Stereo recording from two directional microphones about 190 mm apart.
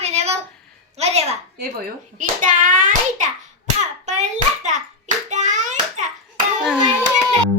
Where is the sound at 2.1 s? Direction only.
45° right (ahead or behind).